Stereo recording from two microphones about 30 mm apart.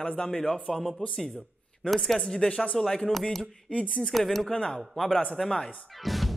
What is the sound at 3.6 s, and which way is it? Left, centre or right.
Speech, left.